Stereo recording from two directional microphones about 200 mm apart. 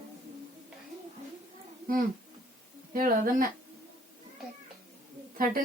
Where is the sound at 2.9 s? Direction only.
45° right (ahead or behind).